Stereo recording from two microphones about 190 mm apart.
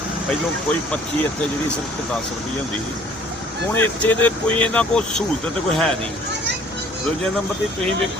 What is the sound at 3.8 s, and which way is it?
Speech, 10° left (ahead or behind).